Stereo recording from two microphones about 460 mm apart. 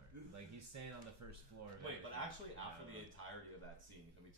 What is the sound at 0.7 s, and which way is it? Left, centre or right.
Speech, right.